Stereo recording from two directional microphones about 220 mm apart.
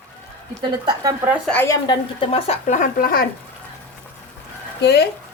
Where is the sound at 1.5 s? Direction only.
10° left (ahead or behind).